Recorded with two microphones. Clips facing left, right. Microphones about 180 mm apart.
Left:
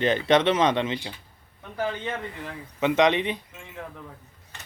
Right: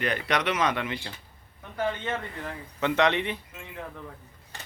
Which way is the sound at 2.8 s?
15° left (ahead or behind).